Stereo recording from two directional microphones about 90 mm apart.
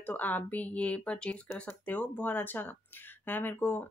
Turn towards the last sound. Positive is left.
turn(degrees=20)  # may be behind; listen again after turning